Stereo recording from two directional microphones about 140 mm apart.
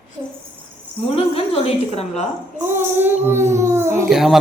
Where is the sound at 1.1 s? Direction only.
45° left (ahead or behind).